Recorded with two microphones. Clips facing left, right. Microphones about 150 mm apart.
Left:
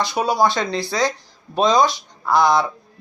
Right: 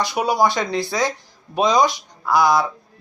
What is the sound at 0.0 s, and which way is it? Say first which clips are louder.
Speech: even; 15° right (ahead or behind).